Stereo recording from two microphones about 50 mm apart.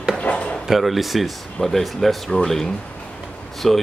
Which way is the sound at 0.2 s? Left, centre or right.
Left.